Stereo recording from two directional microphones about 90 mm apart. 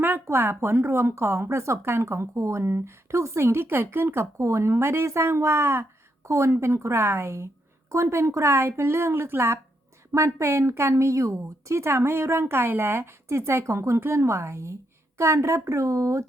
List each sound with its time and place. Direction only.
0.0 s a woman's voice: 25° right (ahead or behind)